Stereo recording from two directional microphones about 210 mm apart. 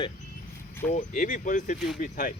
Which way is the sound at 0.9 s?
35° left (ahead or behind).